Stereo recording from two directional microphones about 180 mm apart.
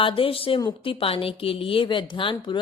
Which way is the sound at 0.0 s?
30° left (ahead or behind).